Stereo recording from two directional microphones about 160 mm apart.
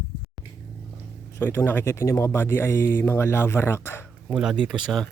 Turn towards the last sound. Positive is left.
turn(degrees=0)  # may be behind; listen again after turning